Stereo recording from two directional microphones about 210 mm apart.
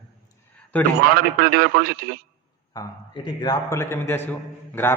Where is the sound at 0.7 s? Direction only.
10° left (ahead or behind).